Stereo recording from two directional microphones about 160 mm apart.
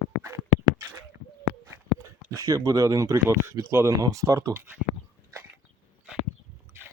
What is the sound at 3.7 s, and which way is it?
Speech, 20° right (ahead or behind).